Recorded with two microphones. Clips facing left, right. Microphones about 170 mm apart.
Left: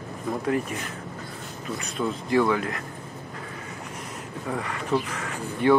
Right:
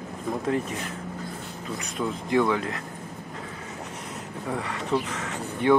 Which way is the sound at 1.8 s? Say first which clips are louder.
Left 1 dB; 20° right (ahead or behind).